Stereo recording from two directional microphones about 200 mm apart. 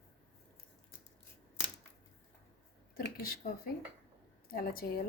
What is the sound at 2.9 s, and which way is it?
A woman's voice, 50° left (ahead or behind).